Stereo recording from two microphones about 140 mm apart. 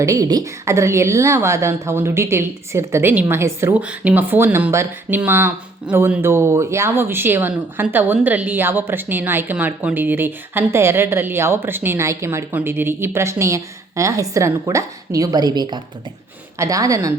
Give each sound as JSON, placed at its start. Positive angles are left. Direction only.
{"t": 0.0, "sound": "a woman's voice", "side_deg": -25}